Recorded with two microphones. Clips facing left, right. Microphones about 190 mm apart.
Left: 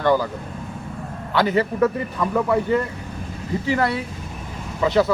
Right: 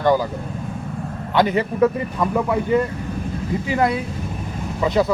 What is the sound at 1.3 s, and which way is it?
Speech, 20° right (ahead or behind).